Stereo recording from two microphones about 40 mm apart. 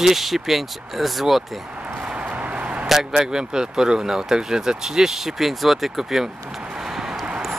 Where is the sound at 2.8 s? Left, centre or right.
Centre.